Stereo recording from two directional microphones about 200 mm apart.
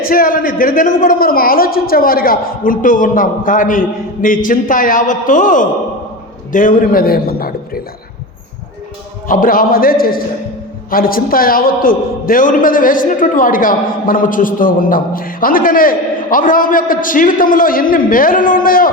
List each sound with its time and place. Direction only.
0.0 s a man's voice: 45° left (ahead or behind)
9.2 s a man's voice: 45° left (ahead or behind)